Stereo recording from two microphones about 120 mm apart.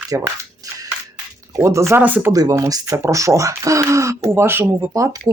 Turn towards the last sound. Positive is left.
turn(degrees=-25)  # may be behind; listen again after turning